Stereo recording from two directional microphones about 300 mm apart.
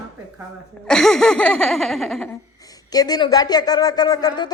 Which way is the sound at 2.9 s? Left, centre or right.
Centre.